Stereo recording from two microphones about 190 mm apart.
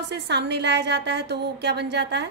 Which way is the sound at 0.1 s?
65° right (ahead or behind).